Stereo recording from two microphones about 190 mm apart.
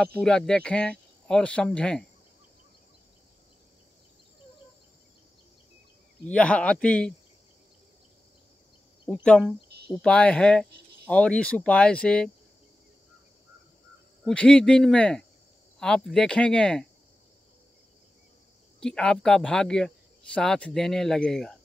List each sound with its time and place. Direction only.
0.0 s speech: 5° left (ahead or behind)
6.2 s speech: 5° left (ahead or behind)
9.0 s speech: centre (ahead or behind)
14.2 s speech: 5° left (ahead or behind)
18.8 s speech: 5° left (ahead or behind)